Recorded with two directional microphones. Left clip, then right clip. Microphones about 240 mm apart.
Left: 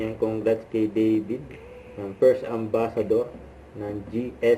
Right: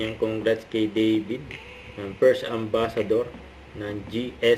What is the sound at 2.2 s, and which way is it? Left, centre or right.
Speech, right.